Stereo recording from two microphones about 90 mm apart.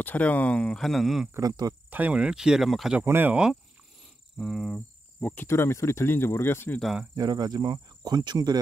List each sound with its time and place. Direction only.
0.0 s speech: 20° left (ahead or behind); by 1.3 s centre (ahead or behind)
1.4 s speech: 45° right (ahead or behind)
1.9 s speech: 15° right (ahead or behind); by 2.9 s centre (ahead or behind)
3.1 s speech: 20° right (ahead or behind)
4.4 s speech: centre (ahead or behind)
4.7 s speech: 20° left (ahead or behind)
7.2 s speech: 45° right (ahead or behind)